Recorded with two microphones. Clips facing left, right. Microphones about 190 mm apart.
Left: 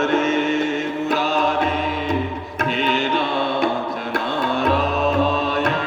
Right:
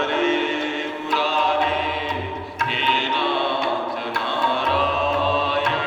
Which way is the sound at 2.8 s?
45° left (ahead or behind).